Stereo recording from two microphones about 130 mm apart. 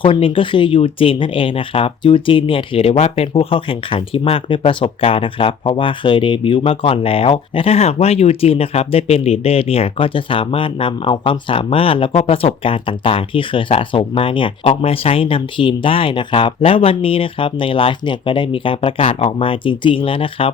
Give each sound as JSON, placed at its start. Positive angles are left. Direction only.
{"t": 0.0, "sound": "speech", "side_deg": 40}